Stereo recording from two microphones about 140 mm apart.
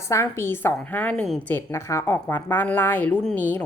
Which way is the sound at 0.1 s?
20° left (ahead or behind).